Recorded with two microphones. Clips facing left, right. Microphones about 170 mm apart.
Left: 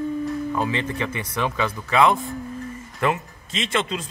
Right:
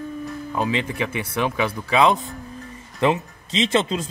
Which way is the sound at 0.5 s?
15° right (ahead or behind).